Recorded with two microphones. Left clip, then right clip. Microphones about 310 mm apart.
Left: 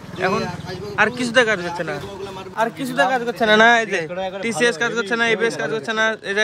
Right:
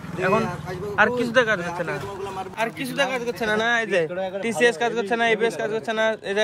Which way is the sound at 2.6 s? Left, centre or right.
Centre.